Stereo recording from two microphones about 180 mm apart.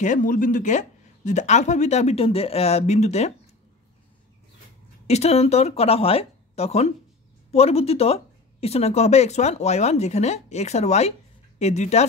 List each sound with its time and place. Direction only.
0.0 s speech: 45° left (ahead or behind)
5.0 s speech: 35° left (ahead or behind)